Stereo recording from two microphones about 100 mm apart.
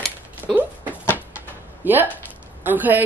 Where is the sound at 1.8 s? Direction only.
20° right (ahead or behind).